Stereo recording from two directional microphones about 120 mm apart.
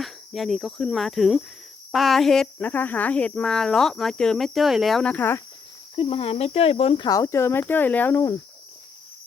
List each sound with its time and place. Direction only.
0.0 s speech: centre (ahead or behind)
6.0 s speech: 55° left (ahead or behind)
7.1 s speech: 25° left (ahead or behind)